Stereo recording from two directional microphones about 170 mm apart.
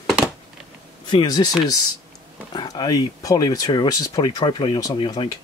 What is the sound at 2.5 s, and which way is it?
Speech, 25° left (ahead or behind).